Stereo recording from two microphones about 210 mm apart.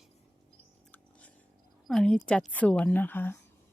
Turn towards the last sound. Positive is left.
turn(degrees=10)  # may be behind; listen again after turning